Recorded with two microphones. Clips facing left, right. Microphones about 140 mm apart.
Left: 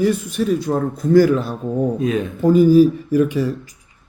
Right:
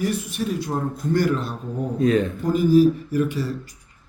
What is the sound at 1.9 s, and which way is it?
Speech, 10° left (ahead or behind).